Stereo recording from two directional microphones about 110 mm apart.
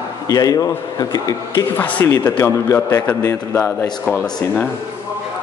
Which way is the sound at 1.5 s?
15° left (ahead or behind).